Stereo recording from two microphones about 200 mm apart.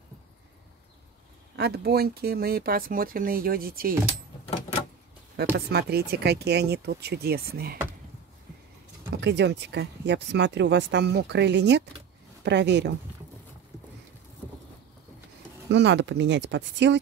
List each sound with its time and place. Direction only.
1.6 s speech: 50° right (ahead or behind)
5.3 s speech: 55° right (ahead or behind)
9.1 s speech: 60° right (ahead or behind)
15.7 s speech: 60° right (ahead or behind)